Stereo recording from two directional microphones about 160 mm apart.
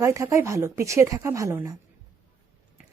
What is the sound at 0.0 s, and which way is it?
Speech, 20° right (ahead or behind).